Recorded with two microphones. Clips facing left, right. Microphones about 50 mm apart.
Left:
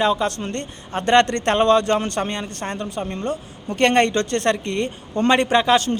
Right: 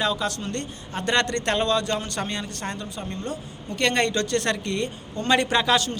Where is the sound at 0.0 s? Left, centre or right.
Left.